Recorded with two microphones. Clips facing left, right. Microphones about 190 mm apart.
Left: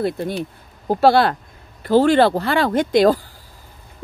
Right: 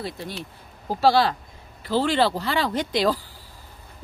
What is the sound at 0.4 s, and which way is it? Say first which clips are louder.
Speech: left 10 dB; 55° left (ahead or behind).